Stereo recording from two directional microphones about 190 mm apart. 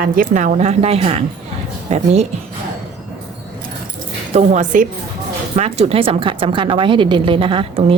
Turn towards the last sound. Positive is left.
turn(degrees=-30)  # may be behind; listen again after turning